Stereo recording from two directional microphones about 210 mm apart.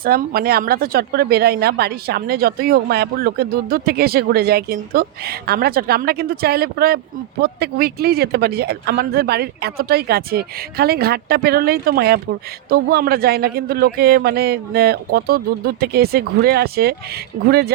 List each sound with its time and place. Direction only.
0.0 s speech: 45° right (ahead or behind)